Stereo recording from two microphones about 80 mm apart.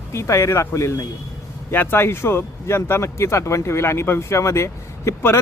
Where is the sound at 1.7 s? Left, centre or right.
Left.